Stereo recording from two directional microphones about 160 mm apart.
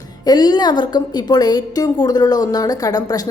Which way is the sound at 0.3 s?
25° left (ahead or behind).